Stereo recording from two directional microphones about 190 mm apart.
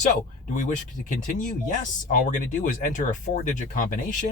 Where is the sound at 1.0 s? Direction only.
45° left (ahead or behind).